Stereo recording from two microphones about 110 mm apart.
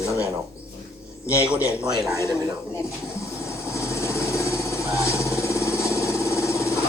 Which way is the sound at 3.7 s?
25° left (ahead or behind).